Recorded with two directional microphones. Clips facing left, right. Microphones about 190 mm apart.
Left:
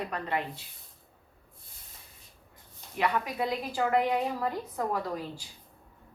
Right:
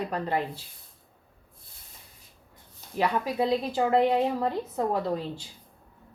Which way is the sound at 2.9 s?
30° right (ahead or behind).